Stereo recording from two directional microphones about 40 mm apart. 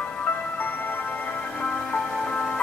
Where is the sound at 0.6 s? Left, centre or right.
Left.